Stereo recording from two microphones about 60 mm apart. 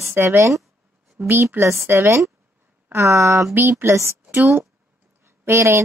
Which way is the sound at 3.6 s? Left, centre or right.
Right.